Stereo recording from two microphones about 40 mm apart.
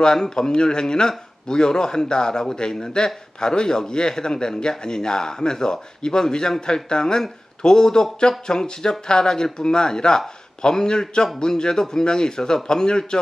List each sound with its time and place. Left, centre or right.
0.0 s speech: centre